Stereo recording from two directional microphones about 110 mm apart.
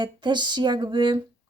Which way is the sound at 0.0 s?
45° right (ahead or behind).